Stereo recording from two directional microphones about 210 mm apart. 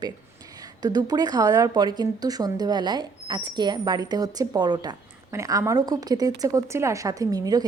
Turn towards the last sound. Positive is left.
turn(degrees=-20)  # may be behind; listen again after turning